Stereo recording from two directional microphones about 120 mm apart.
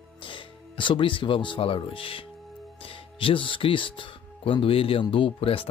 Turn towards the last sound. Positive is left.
turn(degrees=50)  # may be behind; listen again after turning